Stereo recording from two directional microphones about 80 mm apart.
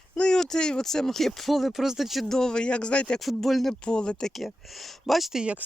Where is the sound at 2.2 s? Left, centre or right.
Centre.